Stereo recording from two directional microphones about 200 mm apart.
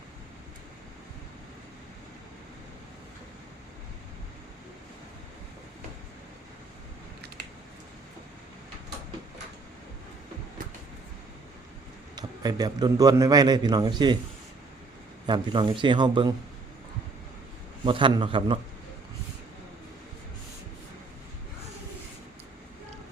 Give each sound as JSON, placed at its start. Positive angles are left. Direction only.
{"t": 12.1, "sound": "a man's voice", "side_deg": -20}
{"t": 15.3, "sound": "a man's voice", "side_deg": -25}
{"t": 17.8, "sound": "a man's voice", "side_deg": -25}